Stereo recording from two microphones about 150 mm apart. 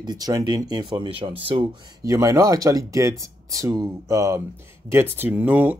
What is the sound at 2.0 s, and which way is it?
Speech, 20° right (ahead or behind).